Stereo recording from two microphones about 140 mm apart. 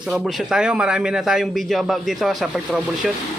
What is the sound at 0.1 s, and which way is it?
A man's voice, centre (ahead or behind).